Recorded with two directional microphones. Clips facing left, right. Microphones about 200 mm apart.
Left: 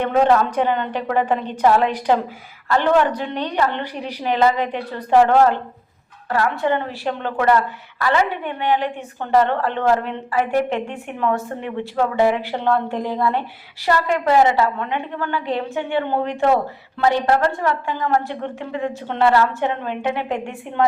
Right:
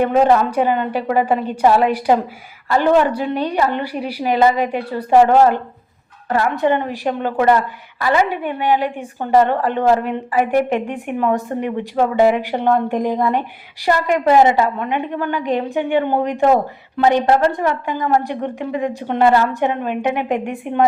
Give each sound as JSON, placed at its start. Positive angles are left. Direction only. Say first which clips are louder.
{"t": 0.0, "sound": "a woman's voice", "louder": "right 2 dB", "side_deg": -10}